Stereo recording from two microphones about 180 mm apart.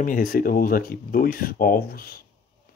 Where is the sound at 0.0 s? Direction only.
50° left (ahead or behind).